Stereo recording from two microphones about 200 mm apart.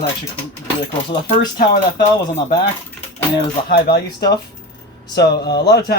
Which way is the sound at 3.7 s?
55° left (ahead or behind).